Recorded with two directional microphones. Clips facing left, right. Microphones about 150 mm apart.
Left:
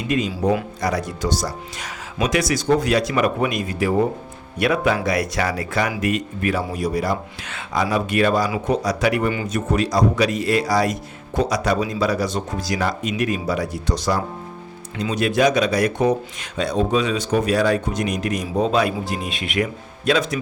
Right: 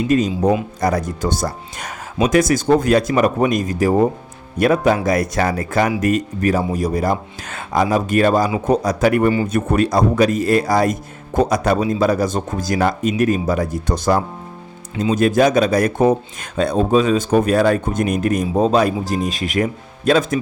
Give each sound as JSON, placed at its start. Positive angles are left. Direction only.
{"t": 0.1, "sound": "a man's voice", "side_deg": -40}
{"t": 9.5, "sound": "a man's voice", "side_deg": -55}